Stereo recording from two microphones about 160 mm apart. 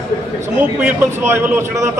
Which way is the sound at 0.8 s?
15° right (ahead or behind).